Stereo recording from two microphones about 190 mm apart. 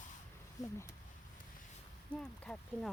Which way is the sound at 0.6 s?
20° left (ahead or behind).